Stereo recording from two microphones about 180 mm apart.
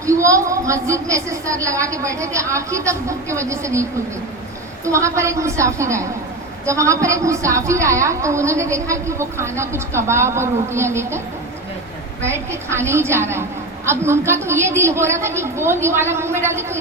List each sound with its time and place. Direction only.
0.0 s a woman's voice: 15° right (ahead or behind)
4.9 s a woman's voice: 15° right (ahead or behind)
12.2 s a woman's voice: 15° right (ahead or behind)